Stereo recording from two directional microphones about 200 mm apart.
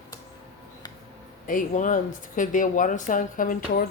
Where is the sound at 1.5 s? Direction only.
40° left (ahead or behind).